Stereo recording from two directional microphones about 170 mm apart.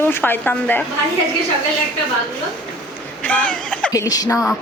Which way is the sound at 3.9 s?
20° left (ahead or behind).